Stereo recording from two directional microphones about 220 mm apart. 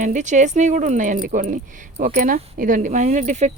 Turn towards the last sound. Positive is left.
turn(degrees=-30)  # may be behind; listen again after turning